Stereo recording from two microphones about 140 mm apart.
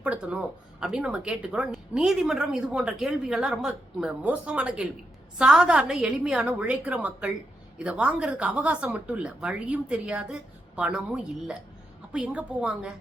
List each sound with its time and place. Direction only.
0.0 s speech: 10° right (ahead or behind)